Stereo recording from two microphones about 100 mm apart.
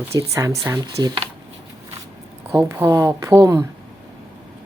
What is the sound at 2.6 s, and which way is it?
A woman's voice, 25° right (ahead or behind).